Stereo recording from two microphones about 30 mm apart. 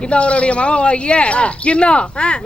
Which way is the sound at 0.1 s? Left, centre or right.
Left.